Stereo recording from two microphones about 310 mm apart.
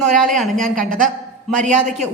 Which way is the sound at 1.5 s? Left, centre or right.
Right.